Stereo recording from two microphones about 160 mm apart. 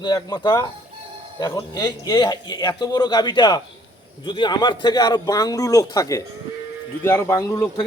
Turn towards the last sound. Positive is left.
turn(degrees=15)  # may be behind; listen again after turning